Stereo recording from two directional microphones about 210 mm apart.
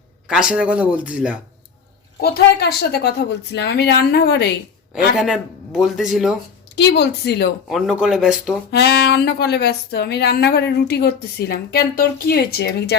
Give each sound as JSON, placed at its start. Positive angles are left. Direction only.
{"t": 0.3, "sound": "speech", "side_deg": -5}
{"t": 2.2, "sound": "speech", "side_deg": 50}
{"t": 5.1, "sound": "speech", "side_deg": 0}
{"t": 6.7, "sound": "speech", "side_deg": 55}
{"t": 7.7, "sound": "speech", "side_deg": 0}
{"t": 8.7, "sound": "speech", "side_deg": 50}